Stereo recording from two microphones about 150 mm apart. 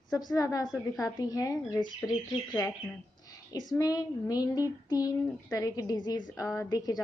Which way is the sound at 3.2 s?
25° left (ahead or behind).